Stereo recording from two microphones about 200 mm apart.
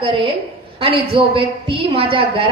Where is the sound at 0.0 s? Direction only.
25° right (ahead or behind).